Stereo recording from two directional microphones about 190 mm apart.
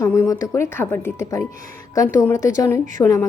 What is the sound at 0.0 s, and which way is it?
A woman's voice, 15° left (ahead or behind).